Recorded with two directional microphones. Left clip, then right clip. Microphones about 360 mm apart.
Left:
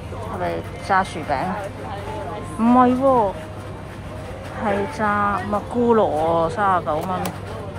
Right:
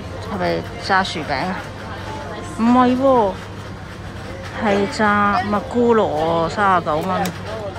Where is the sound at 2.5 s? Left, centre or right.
Centre.